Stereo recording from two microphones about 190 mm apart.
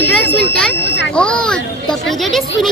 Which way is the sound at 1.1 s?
5° left (ahead or behind).